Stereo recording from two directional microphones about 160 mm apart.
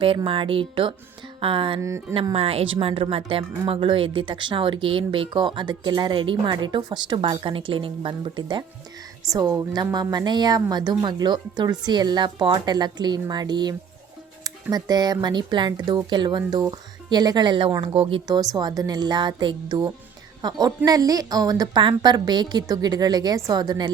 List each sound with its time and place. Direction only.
0.3 s speech: 35° right (ahead or behind)
1.8 s speech: 20° right (ahead or behind)
2.3 s speech: 35° right (ahead or behind)
18.3 s speech: 25° right (ahead or behind)